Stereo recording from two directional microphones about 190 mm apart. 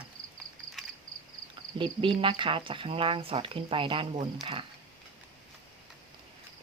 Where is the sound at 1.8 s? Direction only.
25° right (ahead or behind).